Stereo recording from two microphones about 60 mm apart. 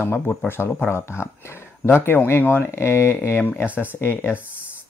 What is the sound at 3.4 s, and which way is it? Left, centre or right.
Speech, left.